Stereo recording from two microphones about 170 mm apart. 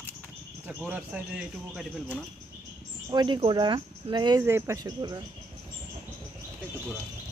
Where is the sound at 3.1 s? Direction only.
25° right (ahead or behind).